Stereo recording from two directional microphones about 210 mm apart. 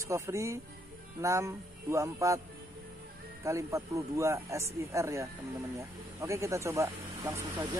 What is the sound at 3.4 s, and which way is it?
Speech, 15° right (ahead or behind).